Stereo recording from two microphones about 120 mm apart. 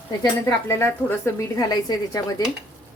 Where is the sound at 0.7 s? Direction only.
20° left (ahead or behind).